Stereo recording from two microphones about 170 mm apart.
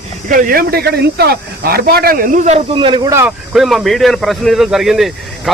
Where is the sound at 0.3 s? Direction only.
55° right (ahead or behind).